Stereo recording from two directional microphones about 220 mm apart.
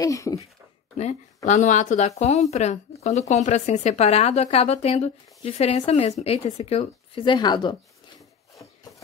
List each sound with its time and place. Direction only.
0.0 s speech: 15° left (ahead or behind)
0.9 s speech: 30° left (ahead or behind)